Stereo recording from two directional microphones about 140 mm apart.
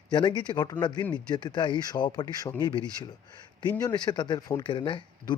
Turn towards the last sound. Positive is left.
turn(degrees=35)  # may be behind; listen again after turning